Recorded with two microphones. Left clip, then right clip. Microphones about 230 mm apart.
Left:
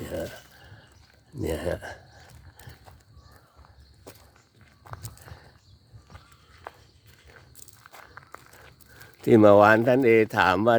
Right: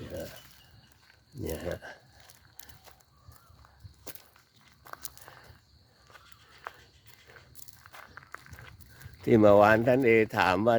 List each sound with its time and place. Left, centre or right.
1.4 s speech: centre
4.9 s walk: centre
7.6 s walk: centre
9.2 s speech: centre